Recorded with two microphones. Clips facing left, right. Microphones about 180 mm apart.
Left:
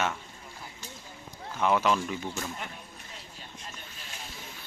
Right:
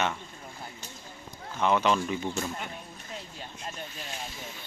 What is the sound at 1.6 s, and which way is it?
Speech, 5° left (ahead or behind).